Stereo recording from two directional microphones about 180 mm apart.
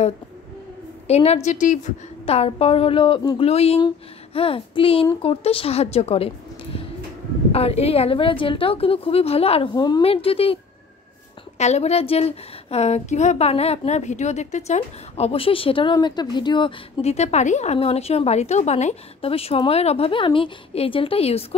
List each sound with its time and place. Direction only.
1.0 s a woman's voice: 35° left (ahead or behind)